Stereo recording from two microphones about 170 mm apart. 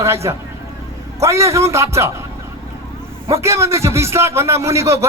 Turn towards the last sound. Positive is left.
turn(degrees=-15)  # may be behind; listen again after turning